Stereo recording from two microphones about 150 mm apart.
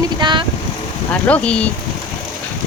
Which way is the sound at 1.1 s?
10° left (ahead or behind).